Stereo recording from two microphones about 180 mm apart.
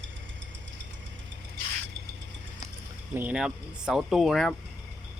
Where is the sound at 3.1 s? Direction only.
5° right (ahead or behind).